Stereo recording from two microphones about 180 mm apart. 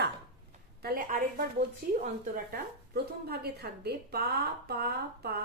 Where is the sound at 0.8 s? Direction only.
55° right (ahead or behind).